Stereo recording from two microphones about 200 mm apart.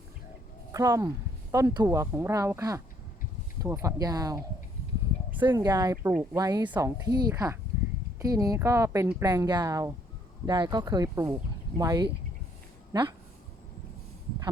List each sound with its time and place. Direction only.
0.7 s speech: 15° right (ahead or behind)